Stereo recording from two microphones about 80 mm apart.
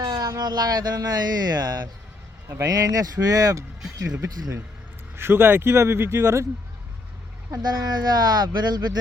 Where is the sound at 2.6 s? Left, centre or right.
Right.